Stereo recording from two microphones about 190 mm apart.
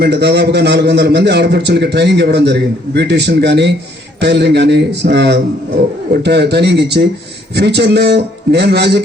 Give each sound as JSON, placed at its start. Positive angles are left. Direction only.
{"t": 0.0, "sound": "a man's voice", "side_deg": -60}